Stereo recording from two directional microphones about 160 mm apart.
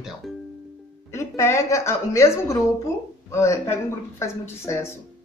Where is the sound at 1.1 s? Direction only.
15° left (ahead or behind).